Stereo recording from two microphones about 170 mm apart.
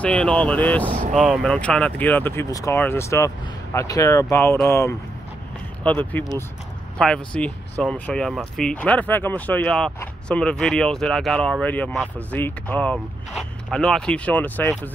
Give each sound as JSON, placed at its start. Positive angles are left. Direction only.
{"t": 0.0, "sound": "speech", "side_deg": 5}